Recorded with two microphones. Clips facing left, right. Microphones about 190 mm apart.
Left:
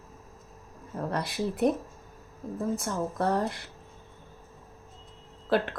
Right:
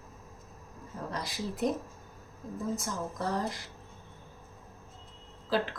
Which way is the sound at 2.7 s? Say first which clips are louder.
Left 5 dB; 60° left (ahead or behind).